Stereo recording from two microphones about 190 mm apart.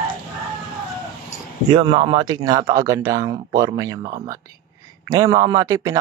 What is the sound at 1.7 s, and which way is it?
Speech, 25° right (ahead or behind).